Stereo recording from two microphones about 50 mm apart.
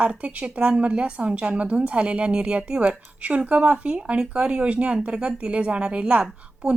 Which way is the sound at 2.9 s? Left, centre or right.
Right.